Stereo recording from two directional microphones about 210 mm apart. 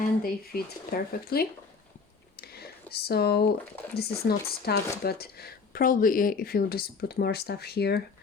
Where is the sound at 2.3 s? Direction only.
50° left (ahead or behind).